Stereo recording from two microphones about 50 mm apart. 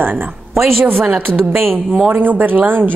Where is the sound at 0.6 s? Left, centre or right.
Right.